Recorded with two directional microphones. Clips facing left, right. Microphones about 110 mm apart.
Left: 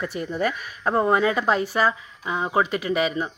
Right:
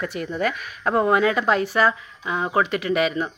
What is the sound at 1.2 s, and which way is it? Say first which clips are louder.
Speech: right 1 dB; 25° left (ahead or behind).